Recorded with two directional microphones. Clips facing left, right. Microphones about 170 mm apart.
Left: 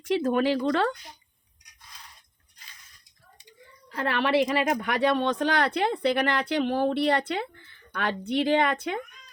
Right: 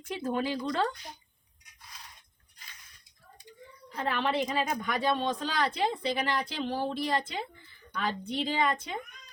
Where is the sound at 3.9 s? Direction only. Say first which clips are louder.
Left 5 dB; 75° left (ahead or behind).